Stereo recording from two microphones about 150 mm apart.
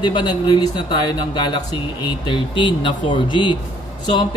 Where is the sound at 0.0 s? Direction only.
30° left (ahead or behind).